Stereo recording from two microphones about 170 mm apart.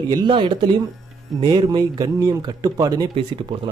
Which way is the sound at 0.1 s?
30° right (ahead or behind).